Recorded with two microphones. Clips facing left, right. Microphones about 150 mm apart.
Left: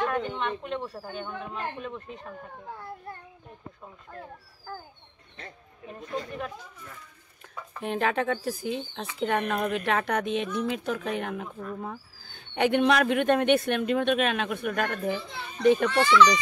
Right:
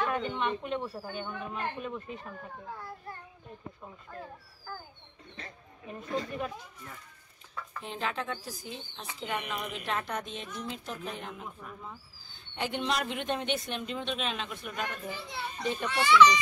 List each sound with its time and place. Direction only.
0.0 s speech: 5° right (ahead or behind)
5.9 s speech: 5° right (ahead or behind)
7.8 s speech: 60° left (ahead or behind)